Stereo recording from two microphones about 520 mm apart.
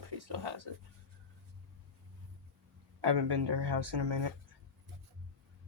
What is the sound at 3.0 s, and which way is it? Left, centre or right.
Speech, right.